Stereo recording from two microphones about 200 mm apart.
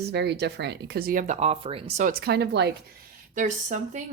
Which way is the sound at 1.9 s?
40° right (ahead or behind).